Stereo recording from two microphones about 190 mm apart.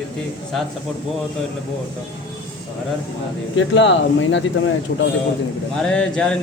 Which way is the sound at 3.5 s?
75° left (ahead or behind).